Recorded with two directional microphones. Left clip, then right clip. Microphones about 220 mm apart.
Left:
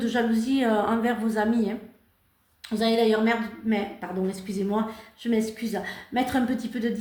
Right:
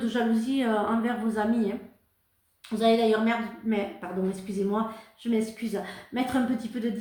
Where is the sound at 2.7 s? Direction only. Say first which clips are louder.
Even; 35° left (ahead or behind).